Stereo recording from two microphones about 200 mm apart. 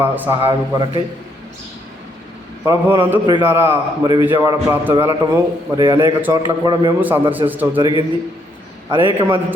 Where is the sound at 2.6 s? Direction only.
10° right (ahead or behind).